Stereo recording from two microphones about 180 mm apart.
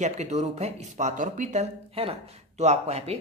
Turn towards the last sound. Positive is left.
turn(degrees=-35)  # may be behind; listen again after turning